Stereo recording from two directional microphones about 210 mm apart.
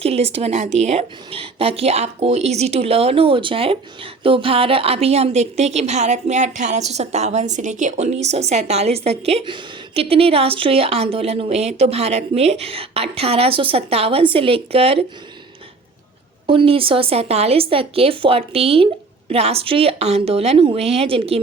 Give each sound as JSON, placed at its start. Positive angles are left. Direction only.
{"t": 0.0, "sound": "a woman's voice", "side_deg": -30}
{"t": 16.5, "sound": "a woman's voice", "side_deg": -25}